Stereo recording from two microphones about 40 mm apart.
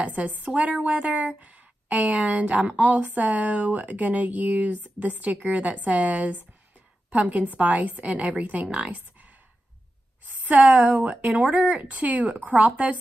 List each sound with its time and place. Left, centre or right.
0.0 s speech: right
10.5 s speech: right